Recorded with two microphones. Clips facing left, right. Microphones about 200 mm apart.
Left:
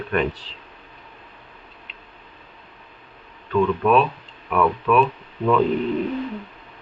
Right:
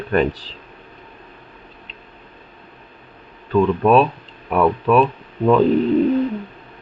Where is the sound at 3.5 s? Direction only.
35° right (ahead or behind).